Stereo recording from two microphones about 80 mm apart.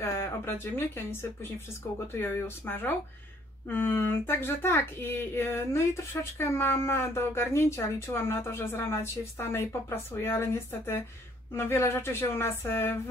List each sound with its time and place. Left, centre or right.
0.0 s speech: left